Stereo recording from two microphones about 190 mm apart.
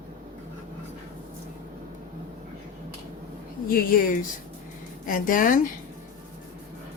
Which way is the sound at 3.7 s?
50° left (ahead or behind).